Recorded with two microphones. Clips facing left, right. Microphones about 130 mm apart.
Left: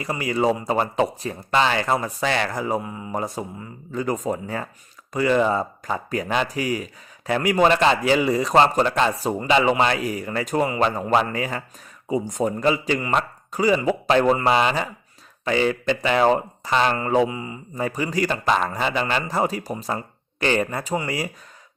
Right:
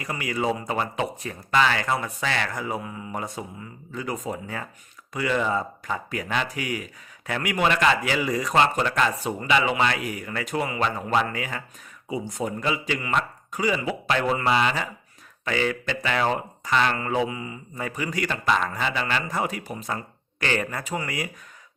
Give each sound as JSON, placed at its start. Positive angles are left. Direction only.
{"t": 0.0, "sound": "speech", "side_deg": 30}